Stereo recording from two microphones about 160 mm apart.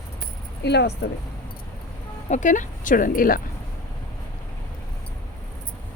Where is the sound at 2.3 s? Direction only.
50° left (ahead or behind).